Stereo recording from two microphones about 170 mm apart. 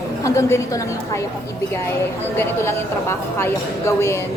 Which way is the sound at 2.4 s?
15° left (ahead or behind).